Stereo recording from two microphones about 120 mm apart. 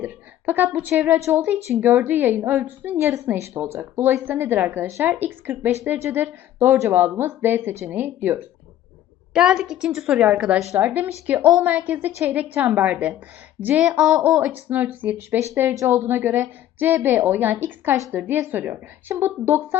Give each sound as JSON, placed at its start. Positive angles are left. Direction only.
{"t": 0.0, "sound": "a woman's voice", "side_deg": -15}
{"t": 9.3, "sound": "a woman's voice", "side_deg": -5}